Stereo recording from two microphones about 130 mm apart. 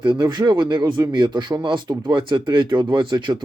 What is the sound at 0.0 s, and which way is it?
Speech, 35° right (ahead or behind).